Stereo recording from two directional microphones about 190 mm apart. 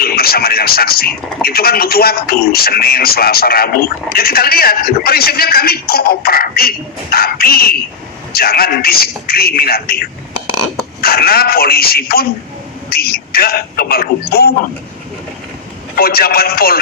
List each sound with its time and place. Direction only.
0.0 s speech: 55° left (ahead or behind)
16.0 s speech: 50° left (ahead or behind)